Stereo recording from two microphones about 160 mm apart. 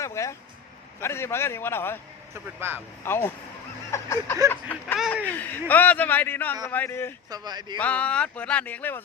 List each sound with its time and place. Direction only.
0.0 s a man's voice: 20° left (ahead or behind)
2.3 s speech: 15° right (ahead or behind)
3.0 s a man's voice: 15° left (ahead or behind)
4.9 s speech: 5° right (ahead or behind)
5.2 s a man's voice: 10° left (ahead or behind)
7.3 s speech: 25° right (ahead or behind)
7.8 s a man's voice: 10° left (ahead or behind)